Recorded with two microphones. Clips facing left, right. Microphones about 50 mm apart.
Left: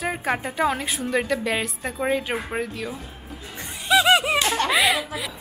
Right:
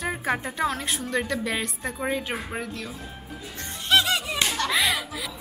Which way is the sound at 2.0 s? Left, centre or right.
Centre.